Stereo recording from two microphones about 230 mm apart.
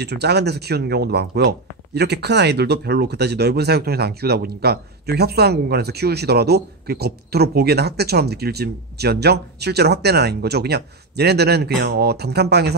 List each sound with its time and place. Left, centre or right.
0.0 s speech: right